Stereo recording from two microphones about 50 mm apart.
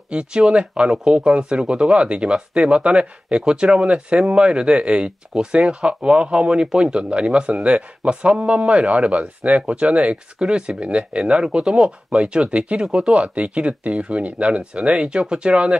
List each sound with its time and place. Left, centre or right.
0.1 s speech: centre